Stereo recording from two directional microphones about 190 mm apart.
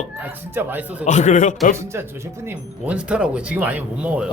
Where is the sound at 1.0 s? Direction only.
40° left (ahead or behind).